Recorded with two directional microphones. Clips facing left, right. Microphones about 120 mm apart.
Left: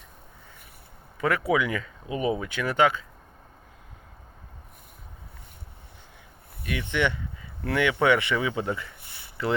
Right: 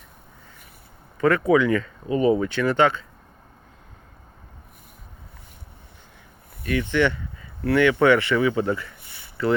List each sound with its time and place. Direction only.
1.2 s speech: 10° left (ahead or behind)
6.6 s speech: 15° left (ahead or behind)